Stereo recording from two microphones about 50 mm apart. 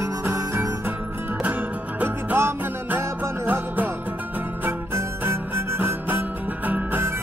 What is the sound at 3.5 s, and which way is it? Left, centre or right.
Music, right.